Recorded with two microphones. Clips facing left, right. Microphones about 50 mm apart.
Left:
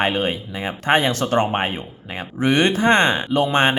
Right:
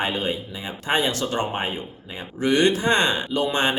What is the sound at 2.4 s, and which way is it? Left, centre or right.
Speech, left.